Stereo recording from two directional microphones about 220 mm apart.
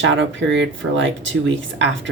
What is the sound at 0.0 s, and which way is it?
Speech, 55° right (ahead or behind).